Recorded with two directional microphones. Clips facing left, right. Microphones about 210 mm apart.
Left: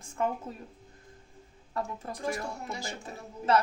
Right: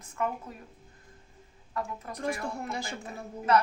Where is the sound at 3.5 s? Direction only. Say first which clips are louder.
Right 1 dB; 30° left (ahead or behind).